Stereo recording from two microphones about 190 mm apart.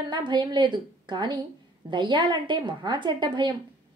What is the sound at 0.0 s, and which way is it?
A woman's voice, 25° right (ahead or behind).